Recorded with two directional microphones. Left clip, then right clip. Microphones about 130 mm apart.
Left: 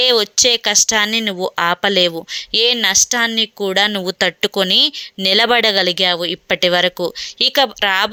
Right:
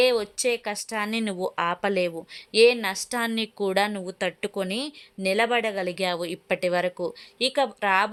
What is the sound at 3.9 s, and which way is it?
Speech, 30° left (ahead or behind).